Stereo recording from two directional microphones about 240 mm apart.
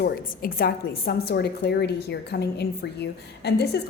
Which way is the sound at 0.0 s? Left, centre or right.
Left.